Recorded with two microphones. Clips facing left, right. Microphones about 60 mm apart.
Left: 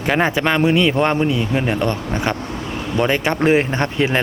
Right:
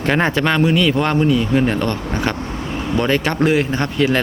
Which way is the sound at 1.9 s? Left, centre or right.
Left.